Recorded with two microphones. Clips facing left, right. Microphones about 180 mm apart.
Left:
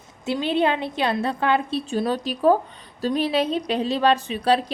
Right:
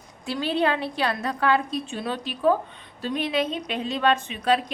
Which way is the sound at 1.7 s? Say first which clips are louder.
Left 6 dB; 40° left (ahead or behind).